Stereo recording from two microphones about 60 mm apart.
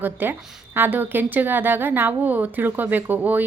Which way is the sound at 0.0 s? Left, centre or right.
Right.